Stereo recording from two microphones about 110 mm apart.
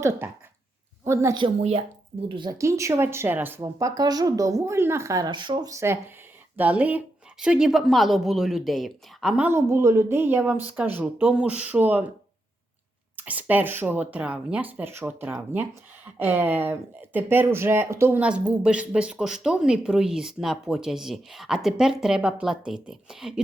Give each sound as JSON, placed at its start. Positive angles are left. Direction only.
{"t": 1.0, "sound": "speech", "side_deg": -25}
{"t": 2.3, "sound": "speech", "side_deg": -45}
{"t": 2.6, "sound": "speech", "side_deg": -25}
{"t": 3.6, "sound": "speech", "side_deg": -30}
{"t": 5.3, "sound": "speech", "side_deg": -45}
{"t": 5.7, "sound": "speech", "side_deg": -25}
{"t": 6.6, "sound": "speech", "side_deg": -15}
{"t": 9.4, "sound": "a woman's voice", "side_deg": -20}
{"t": 13.1, "sound": "a woman's voice", "side_deg": -15}
{"t": 18.2, "sound": "speech", "side_deg": -10}